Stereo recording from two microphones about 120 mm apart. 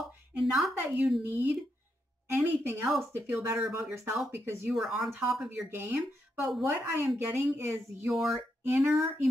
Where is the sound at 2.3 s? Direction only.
20° right (ahead or behind).